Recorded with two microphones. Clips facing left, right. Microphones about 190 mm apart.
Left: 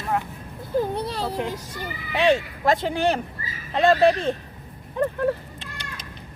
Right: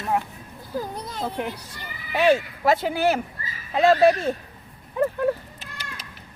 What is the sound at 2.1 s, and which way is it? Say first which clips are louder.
Speech: right 1 dB; 5° right (ahead or behind).